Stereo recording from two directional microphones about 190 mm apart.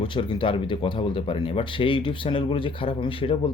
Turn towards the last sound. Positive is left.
turn(degrees=30)  # may be behind; listen again after turning